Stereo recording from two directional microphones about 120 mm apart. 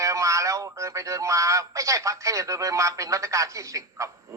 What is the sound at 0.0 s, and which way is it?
Speech, 25° right (ahead or behind).